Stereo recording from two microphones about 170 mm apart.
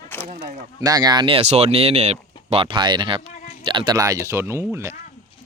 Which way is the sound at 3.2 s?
45° left (ahead or behind).